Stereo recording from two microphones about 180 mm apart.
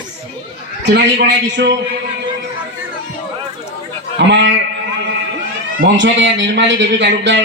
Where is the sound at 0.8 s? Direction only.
75° right (ahead or behind).